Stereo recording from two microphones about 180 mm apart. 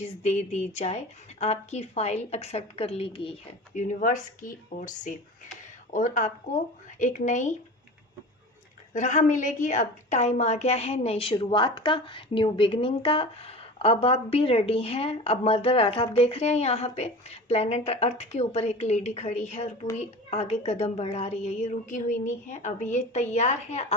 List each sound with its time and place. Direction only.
0.0 s a woman's voice: 40° left (ahead or behind)
8.9 s a woman's voice: 40° left (ahead or behind)